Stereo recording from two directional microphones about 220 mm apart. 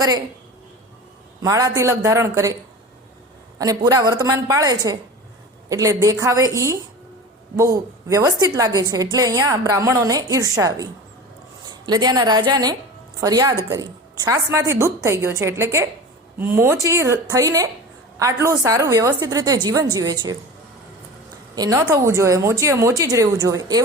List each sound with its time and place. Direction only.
1.4 s a woman's voice: 15° right (ahead or behind)
3.6 s a woman's voice: 15° right (ahead or behind)
11.9 s a woman's voice: 20° right (ahead or behind)
21.5 s a woman's voice: 15° right (ahead or behind)